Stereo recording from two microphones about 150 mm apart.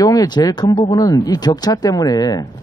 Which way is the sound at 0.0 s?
25° left (ahead or behind).